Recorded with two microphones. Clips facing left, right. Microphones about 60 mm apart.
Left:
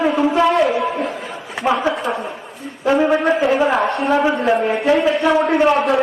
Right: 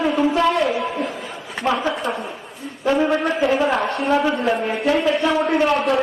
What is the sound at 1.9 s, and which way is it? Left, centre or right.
Speech, centre.